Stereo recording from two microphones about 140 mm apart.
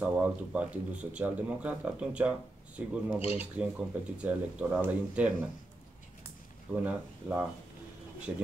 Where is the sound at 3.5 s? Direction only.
10° right (ahead or behind).